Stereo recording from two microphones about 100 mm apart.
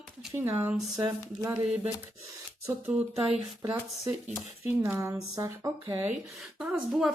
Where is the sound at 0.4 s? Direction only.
25° right (ahead or behind).